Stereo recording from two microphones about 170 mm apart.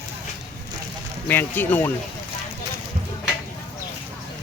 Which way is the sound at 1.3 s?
10° left (ahead or behind).